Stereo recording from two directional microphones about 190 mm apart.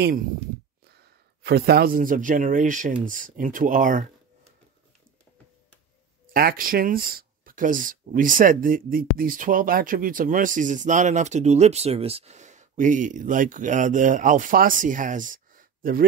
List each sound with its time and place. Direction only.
0.0 s speech: 45° right (ahead or behind)
0.8 s a man's voice: 60° right (ahead or behind)
6.3 s speech: 50° right (ahead or behind)